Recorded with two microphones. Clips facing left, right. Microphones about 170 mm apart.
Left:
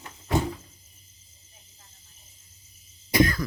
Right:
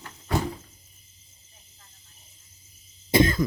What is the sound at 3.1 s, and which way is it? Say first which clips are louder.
Cough: right 2 dB; 25° right (ahead or behind).